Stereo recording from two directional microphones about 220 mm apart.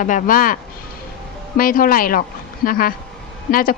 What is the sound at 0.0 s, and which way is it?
Speech, 35° left (ahead or behind).